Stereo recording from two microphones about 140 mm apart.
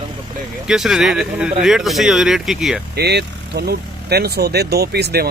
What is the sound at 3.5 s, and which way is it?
Speech, 90° right.